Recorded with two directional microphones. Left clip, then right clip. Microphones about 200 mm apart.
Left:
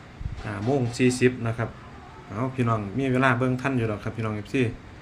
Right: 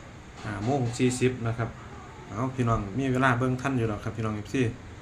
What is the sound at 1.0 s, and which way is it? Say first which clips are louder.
Speech: left 6 dB; 30° left (ahead or behind).